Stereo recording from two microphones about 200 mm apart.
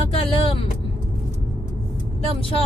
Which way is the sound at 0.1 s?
30° left (ahead or behind).